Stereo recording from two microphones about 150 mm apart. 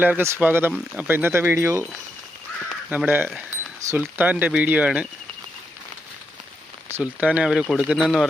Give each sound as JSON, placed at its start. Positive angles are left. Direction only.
{"t": 0.0, "sound": "speech", "side_deg": -10}
{"t": 2.9, "sound": "speech", "side_deg": -10}
{"t": 6.9, "sound": "speech", "side_deg": -10}